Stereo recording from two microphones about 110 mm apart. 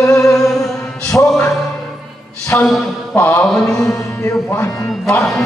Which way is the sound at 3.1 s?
20° left (ahead or behind).